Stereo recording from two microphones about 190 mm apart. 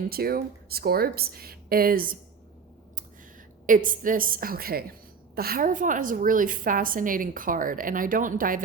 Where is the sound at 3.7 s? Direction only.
45° right (ahead or behind).